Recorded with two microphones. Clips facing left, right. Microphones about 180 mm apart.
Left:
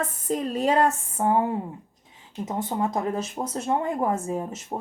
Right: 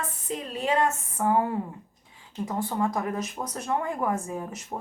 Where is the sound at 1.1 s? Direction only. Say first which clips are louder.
Even; 25° left (ahead or behind).